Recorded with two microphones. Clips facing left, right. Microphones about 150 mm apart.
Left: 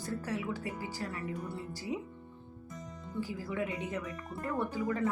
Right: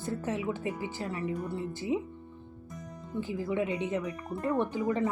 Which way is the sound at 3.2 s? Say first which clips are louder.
Right 5 dB; 20° right (ahead or behind).